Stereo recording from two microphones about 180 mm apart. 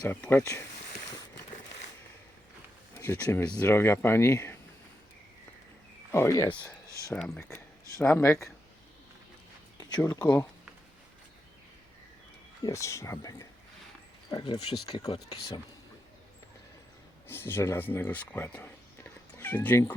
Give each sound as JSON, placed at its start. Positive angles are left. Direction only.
{"t": 0.0, "sound": "speech", "side_deg": 10}
{"t": 2.9, "sound": "speech", "side_deg": 15}
{"t": 6.1, "sound": "speech", "side_deg": 15}
{"t": 6.8, "sound": "a sound", "side_deg": -15}
{"t": 7.1, "sound": "speech", "side_deg": 10}
{"t": 9.7, "sound": "speech", "side_deg": 20}
{"t": 12.6, "sound": "speech", "side_deg": 15}
{"t": 17.2, "sound": "speech", "side_deg": 10}